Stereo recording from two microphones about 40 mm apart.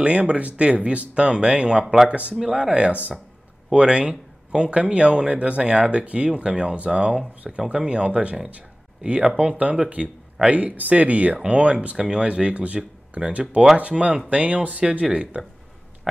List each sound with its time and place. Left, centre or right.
0.0 s speech: right
2.4 s speech: centre
2.7 s speech: right
9.6 s speech: right
12.0 s speech: right